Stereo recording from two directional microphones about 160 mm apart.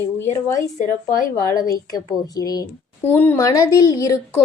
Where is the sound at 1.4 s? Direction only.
20° left (ahead or behind).